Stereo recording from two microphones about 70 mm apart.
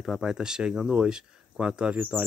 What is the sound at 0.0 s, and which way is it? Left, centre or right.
Speech, centre.